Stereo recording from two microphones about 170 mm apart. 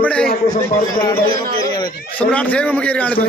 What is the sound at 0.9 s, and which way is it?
Speech, 25° left (ahead or behind).